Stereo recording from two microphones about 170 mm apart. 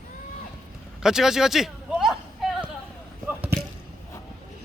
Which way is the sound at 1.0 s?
5° right (ahead or behind).